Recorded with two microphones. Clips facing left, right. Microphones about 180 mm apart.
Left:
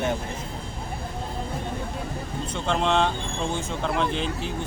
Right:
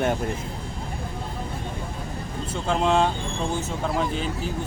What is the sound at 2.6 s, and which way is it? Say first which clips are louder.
Speech: right 2 dB; 5° right (ahead or behind).